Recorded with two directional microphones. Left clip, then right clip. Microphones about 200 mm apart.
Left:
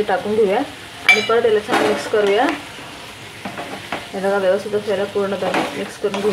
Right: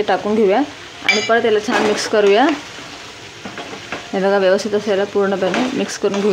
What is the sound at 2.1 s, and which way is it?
Speech, 60° right (ahead or behind).